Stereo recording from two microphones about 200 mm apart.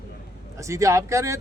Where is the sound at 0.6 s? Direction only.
15° right (ahead or behind).